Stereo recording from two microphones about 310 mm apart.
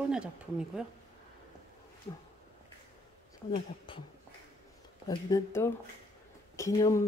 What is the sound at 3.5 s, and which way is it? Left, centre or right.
Speech, centre.